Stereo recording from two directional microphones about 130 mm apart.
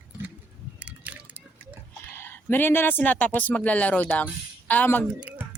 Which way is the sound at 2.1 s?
15° left (ahead or behind).